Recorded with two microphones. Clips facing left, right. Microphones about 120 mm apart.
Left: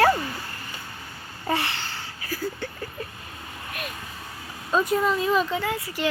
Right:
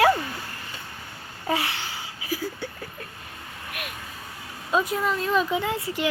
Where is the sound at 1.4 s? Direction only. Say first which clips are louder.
Even; centre (ahead or behind).